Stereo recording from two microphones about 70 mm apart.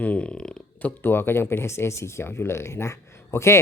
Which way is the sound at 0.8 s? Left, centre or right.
Left.